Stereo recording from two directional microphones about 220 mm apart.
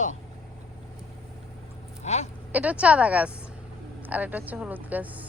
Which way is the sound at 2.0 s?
30° left (ahead or behind).